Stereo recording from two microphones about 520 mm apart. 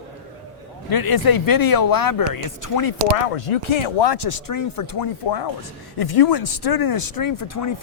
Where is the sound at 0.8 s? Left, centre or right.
Left.